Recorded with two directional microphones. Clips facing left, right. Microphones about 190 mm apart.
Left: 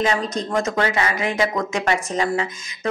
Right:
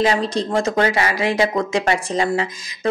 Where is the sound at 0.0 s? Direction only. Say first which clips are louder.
Right 3 dB; 30° right (ahead or behind).